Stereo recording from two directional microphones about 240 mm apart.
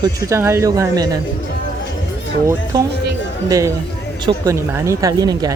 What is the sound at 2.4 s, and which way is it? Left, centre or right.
Speech, centre.